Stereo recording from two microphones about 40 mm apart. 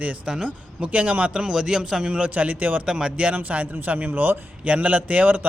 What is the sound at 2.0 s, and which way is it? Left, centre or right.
Speech, right.